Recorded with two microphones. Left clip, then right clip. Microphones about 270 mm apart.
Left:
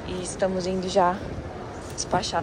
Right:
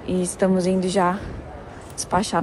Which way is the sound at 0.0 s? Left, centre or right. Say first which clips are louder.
Right 4 dB; centre.